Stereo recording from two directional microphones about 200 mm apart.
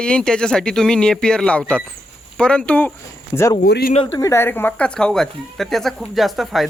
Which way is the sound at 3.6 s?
55° left (ahead or behind).